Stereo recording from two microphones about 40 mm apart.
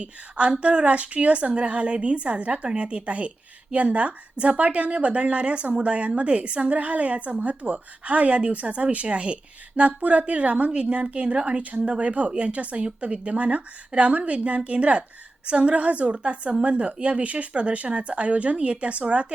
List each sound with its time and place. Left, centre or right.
0.0 s a woman's voice: right